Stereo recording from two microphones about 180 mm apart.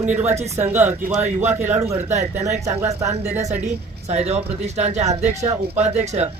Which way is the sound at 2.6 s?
15° right (ahead or behind).